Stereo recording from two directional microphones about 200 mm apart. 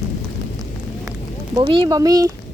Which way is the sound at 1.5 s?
25° right (ahead or behind).